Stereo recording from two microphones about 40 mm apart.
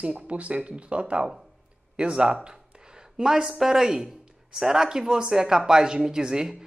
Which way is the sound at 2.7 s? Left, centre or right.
Centre.